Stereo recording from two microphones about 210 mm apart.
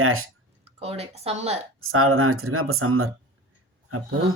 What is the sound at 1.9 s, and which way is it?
Speech, 90° right.